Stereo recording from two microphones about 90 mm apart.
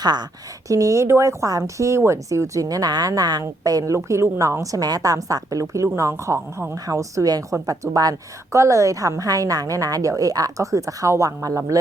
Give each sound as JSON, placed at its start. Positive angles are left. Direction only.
{"t": 0.0, "sound": "speech", "side_deg": -50}
{"t": 0.7, "sound": "a woman's voice", "side_deg": -35}